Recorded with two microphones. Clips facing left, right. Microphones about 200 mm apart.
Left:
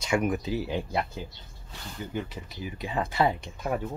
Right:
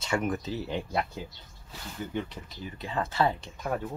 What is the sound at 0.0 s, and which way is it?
Speech, 15° left (ahead or behind).